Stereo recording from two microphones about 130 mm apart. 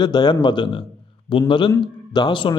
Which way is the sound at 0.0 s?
35° left (ahead or behind).